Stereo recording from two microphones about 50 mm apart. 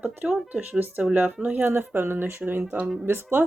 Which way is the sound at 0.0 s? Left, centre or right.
Right.